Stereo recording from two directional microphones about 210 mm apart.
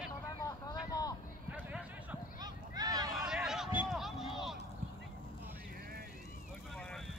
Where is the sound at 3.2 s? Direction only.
5° right (ahead or behind).